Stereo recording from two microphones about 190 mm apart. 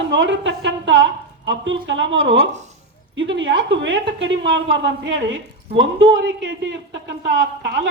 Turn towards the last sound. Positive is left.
turn(degrees=-75)  # may be behind; listen again after turning